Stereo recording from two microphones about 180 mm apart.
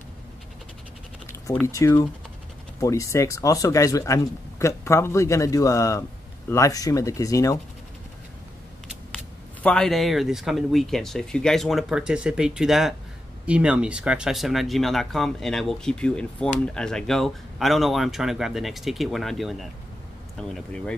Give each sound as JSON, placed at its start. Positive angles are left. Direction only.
{"t": 1.7, "sound": "speech", "side_deg": 15}
{"t": 8.8, "sound": "speech", "side_deg": 5}